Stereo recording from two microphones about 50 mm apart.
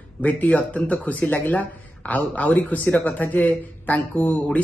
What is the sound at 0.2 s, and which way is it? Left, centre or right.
Speech, left.